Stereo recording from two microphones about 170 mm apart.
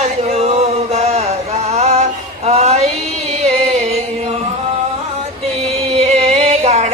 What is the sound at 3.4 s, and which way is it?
Music, 40° right (ahead or behind).